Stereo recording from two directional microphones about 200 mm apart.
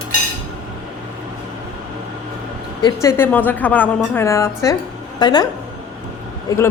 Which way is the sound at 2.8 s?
15° left (ahead or behind).